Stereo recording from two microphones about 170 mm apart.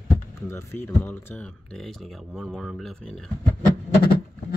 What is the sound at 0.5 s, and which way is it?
Speech, 15° left (ahead or behind).